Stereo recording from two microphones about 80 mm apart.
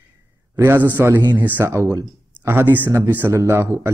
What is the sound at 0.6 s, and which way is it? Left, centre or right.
Speech, right.